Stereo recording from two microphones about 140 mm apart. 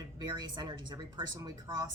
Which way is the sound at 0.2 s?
30° right (ahead or behind).